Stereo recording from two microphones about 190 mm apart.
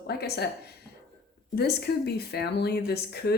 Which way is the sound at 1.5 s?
55° left (ahead or behind).